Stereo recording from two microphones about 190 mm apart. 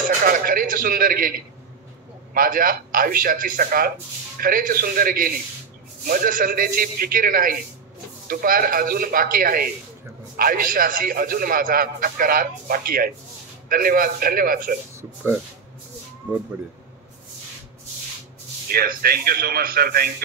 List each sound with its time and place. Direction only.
0.2 s a sound: 50° right (ahead or behind)
2.3 s a man's voice: 50° right (ahead or behind)
18.7 s a man's voice: 50° right (ahead or behind)